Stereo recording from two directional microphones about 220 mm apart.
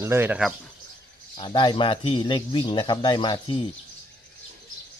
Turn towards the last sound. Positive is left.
turn(degrees=20)  # may be behind; listen again after turning